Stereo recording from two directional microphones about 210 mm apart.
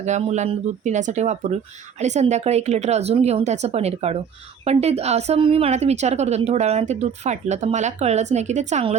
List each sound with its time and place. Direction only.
0.0 s speech: 30° right (ahead or behind)